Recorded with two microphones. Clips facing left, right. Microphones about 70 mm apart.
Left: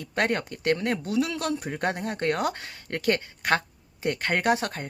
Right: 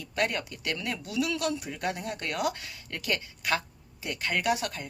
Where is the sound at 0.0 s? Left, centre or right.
Left.